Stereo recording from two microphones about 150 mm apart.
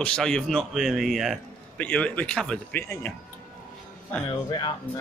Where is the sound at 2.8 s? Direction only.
15° left (ahead or behind).